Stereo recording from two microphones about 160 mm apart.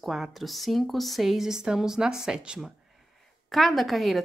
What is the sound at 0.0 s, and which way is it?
A woman's voice, centre (ahead or behind).